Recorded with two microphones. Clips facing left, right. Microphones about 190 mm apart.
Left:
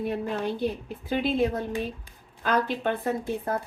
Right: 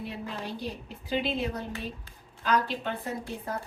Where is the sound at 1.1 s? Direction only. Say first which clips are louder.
Left 5 dB; 50° left (ahead or behind).